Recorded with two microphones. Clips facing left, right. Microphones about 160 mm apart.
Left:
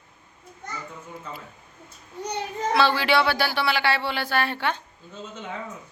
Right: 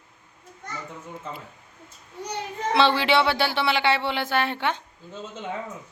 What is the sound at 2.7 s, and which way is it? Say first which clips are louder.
Speech: right 1 dB; 25° right (ahead or behind).